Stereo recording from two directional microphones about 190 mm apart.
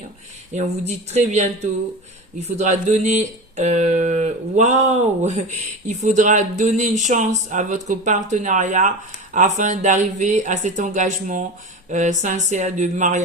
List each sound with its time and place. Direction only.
0.5 s speech: 35° right (ahead or behind)
2.6 s speech: 35° right (ahead or behind)